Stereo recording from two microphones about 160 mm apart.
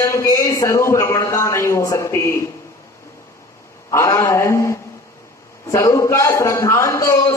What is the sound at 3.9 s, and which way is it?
A man's voice, 20° left (ahead or behind).